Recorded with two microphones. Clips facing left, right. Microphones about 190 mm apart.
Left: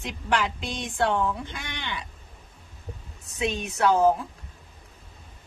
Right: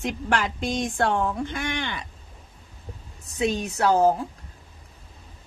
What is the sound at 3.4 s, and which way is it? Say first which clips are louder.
Speech: right 2 dB; 35° right (ahead or behind).